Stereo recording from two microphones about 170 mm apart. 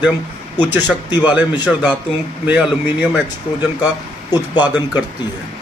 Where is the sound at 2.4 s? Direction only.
10° right (ahead or behind).